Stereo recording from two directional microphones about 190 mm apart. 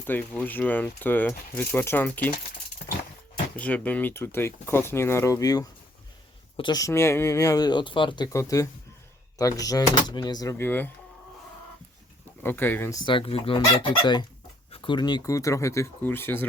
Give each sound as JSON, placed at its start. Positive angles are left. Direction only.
{"t": 0.0, "sound": "speech", "side_deg": 10}
{"t": 3.5, "sound": "speech", "side_deg": 10}
{"t": 12.4, "sound": "speech", "side_deg": 10}
{"t": 13.1, "sound": "speech", "side_deg": 30}